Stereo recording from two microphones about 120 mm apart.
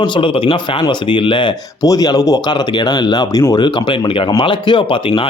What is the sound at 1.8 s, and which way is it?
Speech, 30° left (ahead or behind).